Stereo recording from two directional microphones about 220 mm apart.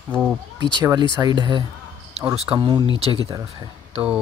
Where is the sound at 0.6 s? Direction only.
20° right (ahead or behind).